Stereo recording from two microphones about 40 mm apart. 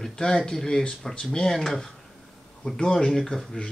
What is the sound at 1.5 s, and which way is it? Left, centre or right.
Speech, centre.